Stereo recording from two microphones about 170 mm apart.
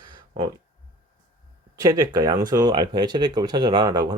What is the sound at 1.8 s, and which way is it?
Speech, 20° right (ahead or behind).